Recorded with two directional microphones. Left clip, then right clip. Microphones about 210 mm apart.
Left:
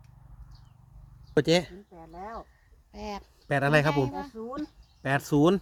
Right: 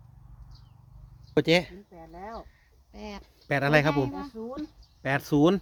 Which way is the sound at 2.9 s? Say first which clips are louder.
Left 4 dB; 60° left (ahead or behind).